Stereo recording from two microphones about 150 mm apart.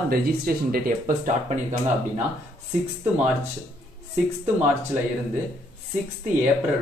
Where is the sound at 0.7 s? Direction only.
70° right (ahead or behind).